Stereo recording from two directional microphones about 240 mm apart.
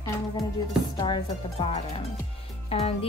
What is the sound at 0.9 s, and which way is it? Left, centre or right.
Music, centre.